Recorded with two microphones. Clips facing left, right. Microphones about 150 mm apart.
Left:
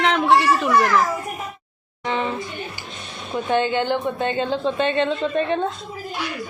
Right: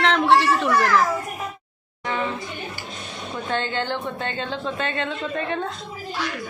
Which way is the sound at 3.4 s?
15° left (ahead or behind).